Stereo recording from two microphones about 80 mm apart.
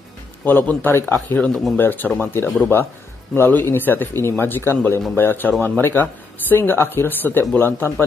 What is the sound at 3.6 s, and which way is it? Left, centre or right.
Speech, left.